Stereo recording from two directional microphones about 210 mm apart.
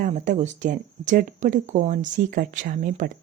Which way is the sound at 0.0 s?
35° right (ahead or behind).